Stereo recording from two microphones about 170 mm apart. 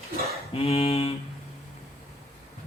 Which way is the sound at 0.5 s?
35° left (ahead or behind).